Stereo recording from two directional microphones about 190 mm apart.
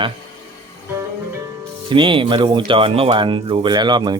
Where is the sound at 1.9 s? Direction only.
25° right (ahead or behind).